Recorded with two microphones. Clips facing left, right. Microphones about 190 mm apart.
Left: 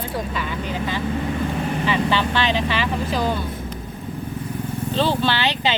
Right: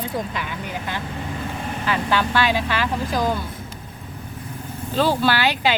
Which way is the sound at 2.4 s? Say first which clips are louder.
Even; 10° right (ahead or behind).